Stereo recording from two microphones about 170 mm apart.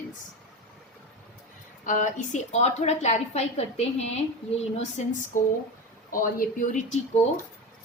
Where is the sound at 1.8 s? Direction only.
50° left (ahead or behind).